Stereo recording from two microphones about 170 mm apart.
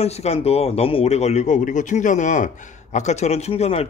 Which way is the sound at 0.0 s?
40° left (ahead or behind).